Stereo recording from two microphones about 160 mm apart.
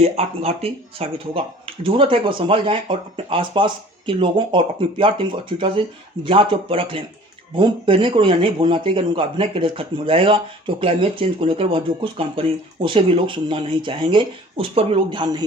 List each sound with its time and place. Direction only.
0.0 s speech: 40° right (ahead or behind)